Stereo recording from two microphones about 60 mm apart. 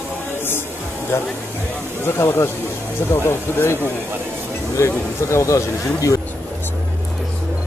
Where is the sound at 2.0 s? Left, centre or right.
Left.